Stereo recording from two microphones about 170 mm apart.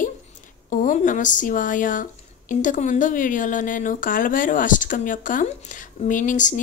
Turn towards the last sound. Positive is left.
turn(degrees=50)  # may be behind; listen again after turning